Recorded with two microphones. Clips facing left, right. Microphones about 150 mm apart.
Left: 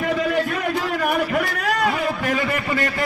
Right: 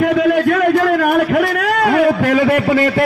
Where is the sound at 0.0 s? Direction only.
70° right (ahead or behind).